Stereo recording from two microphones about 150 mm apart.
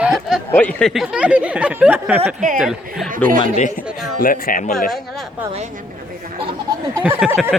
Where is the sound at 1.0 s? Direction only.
5° right (ahead or behind).